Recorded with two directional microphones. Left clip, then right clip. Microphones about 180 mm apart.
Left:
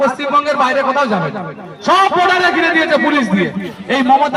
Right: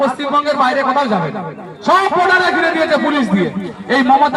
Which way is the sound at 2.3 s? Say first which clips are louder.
Left 1 dB; 55° left (ahead or behind).